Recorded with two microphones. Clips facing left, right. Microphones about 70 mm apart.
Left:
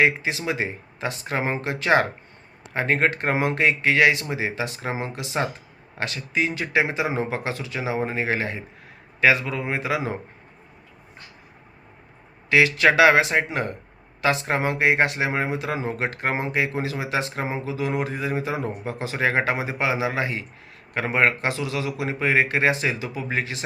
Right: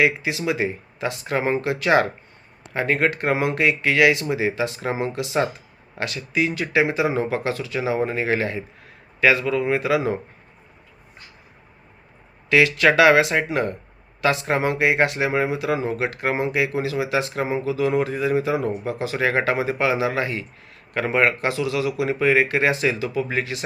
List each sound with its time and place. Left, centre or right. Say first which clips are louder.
0.0 s speech: right 1 dB; left
12.5 s speech: right 1 dB; left